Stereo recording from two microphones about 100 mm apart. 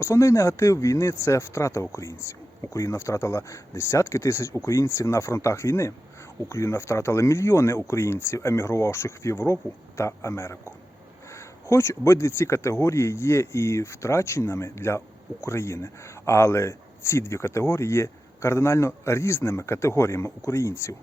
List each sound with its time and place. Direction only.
0.0 s speech: 30° left (ahead or behind)
11.7 s speech: 25° left (ahead or behind)